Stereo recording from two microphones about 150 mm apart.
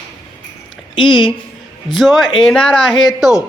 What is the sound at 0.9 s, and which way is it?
Speech, 30° left (ahead or behind).